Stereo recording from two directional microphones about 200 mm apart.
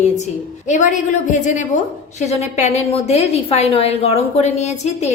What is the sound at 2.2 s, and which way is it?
A woman's voice, 35° left (ahead or behind).